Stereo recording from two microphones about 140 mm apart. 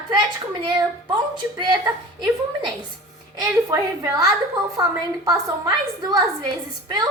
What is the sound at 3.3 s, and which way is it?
A woman's voice, 25° right (ahead or behind).